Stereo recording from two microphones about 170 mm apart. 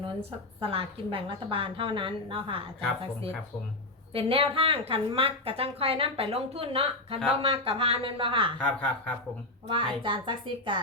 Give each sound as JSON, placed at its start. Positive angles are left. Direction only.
{"t": 0.0, "sound": "a woman's voice", "side_deg": -35}
{"t": 8.5, "sound": "speech", "side_deg": 5}
{"t": 9.6, "sound": "a woman's voice", "side_deg": -30}